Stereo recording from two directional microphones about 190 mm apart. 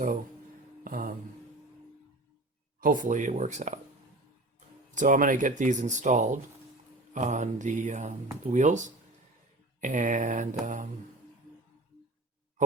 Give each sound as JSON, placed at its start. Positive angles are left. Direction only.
{"t": 0.9, "sound": "mantra", "side_deg": -50}
{"t": 2.8, "sound": "speech", "side_deg": -45}
{"t": 4.9, "sound": "speech", "side_deg": -45}